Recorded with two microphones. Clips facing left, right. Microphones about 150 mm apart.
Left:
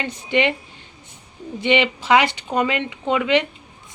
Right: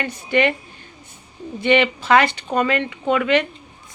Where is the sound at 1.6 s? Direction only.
15° left (ahead or behind).